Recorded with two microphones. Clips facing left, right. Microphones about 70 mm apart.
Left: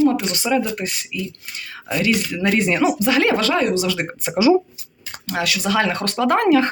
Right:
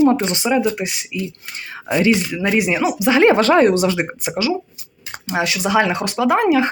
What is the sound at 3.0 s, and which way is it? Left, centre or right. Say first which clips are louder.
Speech: right 5 dB; right.